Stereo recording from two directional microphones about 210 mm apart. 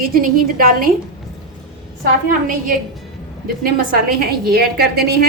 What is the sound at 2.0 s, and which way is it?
A woman's voice, 40° right (ahead or behind).